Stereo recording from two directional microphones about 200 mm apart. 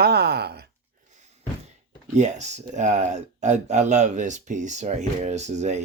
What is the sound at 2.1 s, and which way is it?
Speech, 35° right (ahead or behind).